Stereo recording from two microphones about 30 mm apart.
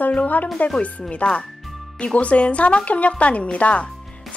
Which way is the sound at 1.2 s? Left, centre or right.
Left.